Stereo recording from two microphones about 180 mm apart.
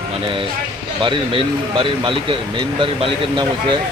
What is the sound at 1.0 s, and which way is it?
Speech, 30° right (ahead or behind).